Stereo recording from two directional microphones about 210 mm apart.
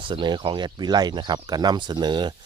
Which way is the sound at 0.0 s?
20° right (ahead or behind).